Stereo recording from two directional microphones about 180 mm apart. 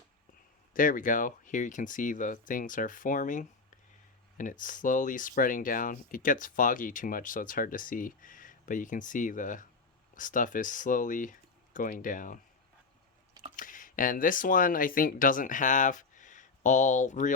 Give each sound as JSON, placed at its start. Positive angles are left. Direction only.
{"t": 0.7, "sound": "speech", "side_deg": 50}
{"t": 4.6, "sound": "speech", "side_deg": 45}
{"t": 13.6, "sound": "speech", "side_deg": 50}